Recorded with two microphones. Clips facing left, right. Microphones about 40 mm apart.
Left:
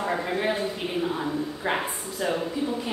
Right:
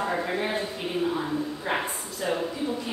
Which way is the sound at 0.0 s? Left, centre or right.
Centre.